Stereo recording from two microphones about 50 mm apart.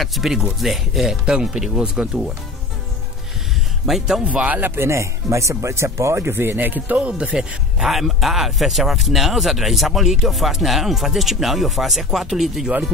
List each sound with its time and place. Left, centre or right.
0.0 s speech: centre
3.8 s speech: centre
4.3 s speech: right
4.6 s speech: right
4.8 s speech: right
5.9 s speech: right
7.0 s speech: right
7.8 s speech: centre